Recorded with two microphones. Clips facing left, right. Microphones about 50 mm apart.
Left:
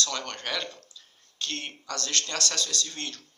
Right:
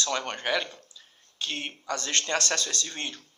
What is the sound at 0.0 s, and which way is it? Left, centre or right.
Speech, right.